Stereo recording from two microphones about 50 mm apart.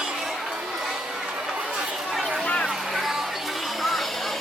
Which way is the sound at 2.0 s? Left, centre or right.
Centre.